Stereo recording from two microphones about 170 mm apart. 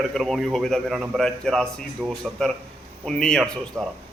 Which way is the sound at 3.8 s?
15° right (ahead or behind).